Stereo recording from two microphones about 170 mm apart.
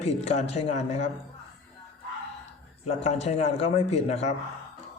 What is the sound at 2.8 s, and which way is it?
A man's voice, 40° left (ahead or behind).